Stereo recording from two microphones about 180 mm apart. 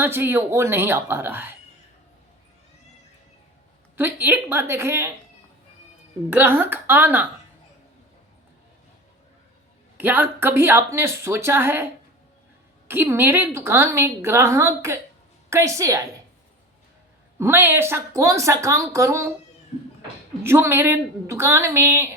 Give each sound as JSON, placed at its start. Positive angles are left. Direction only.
{"t": 0.0, "sound": "a woman's voice", "side_deg": -10}
{"t": 3.9, "sound": "a woman's voice", "side_deg": -10}
{"t": 6.3, "sound": "a woman's voice", "side_deg": -10}
{"t": 10.0, "sound": "a woman's voice", "side_deg": -10}
{"t": 12.9, "sound": "a woman's voice", "side_deg": -10}
{"t": 17.3, "sound": "a woman's voice", "side_deg": -15}
{"t": 20.4, "sound": "a woman's voice", "side_deg": -15}